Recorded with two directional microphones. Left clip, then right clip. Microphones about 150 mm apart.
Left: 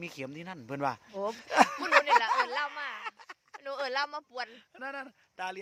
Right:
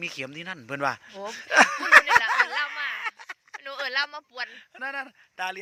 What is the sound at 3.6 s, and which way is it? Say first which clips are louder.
Speech: right 4 dB; 90° left.